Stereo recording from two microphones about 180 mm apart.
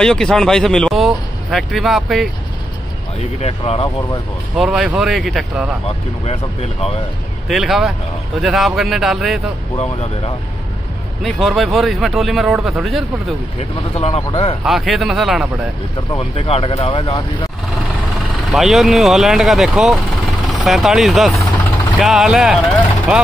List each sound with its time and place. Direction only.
0.0 s speech: 5° left (ahead or behind)
3.3 s speech: 35° left (ahead or behind)
4.6 s speech: 5° right (ahead or behind)
5.9 s speech: 35° left (ahead or behind)
7.4 s speech: centre (ahead or behind)
11.2 s speech: centre (ahead or behind)
13.9 s speech: 35° left (ahead or behind)
14.6 s speech: centre (ahead or behind)
16.1 s speech: 30° left (ahead or behind)
18.5 s speech: centre (ahead or behind)